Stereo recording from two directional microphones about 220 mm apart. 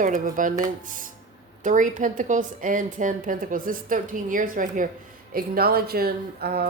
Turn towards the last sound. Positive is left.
turn(degrees=-45)  # may be behind; listen again after turning